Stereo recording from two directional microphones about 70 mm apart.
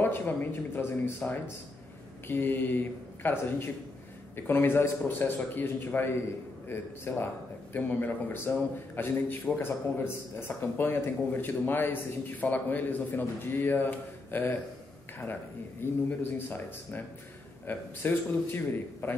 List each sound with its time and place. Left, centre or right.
0.0 s a man's voice: left
15.8 s a man's voice: left